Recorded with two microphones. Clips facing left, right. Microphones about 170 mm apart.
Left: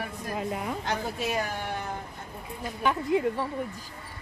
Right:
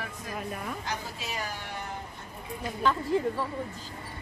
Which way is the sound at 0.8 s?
55° left (ahead or behind).